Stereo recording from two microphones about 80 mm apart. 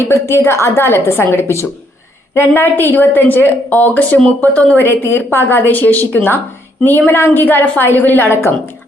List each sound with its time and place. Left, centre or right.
0.1 s a woman's voice: left